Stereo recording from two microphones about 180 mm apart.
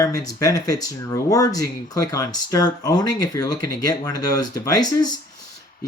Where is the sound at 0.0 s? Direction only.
20° left (ahead or behind).